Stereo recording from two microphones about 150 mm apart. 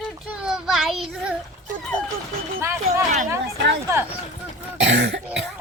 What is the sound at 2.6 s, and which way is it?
Speech, 20° right (ahead or behind).